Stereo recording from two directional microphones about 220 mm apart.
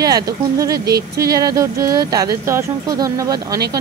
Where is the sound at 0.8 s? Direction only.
45° right (ahead or behind).